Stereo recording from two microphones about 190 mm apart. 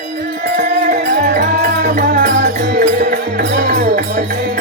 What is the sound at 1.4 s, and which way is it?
Music, 60° right (ahead or behind).